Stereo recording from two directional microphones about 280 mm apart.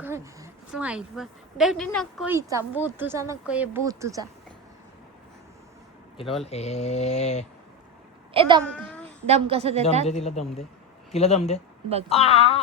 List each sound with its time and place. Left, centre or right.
0.0 s a woman's voice: centre
6.4 s speech: left
8.3 s a woman's voice: centre
10.1 s speech: left